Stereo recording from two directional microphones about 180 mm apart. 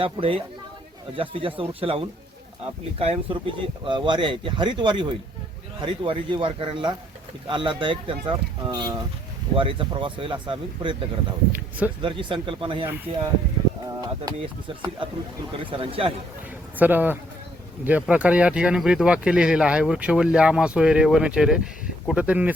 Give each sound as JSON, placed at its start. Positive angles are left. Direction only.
{"t": 0.0, "sound": "a man's voice", "side_deg": -30}
{"t": 14.0, "sound": "a man's voice", "side_deg": -25}
{"t": 16.7, "sound": "a man's voice", "side_deg": -10}